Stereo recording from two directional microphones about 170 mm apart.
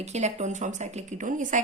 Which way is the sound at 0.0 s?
40° right (ahead or behind).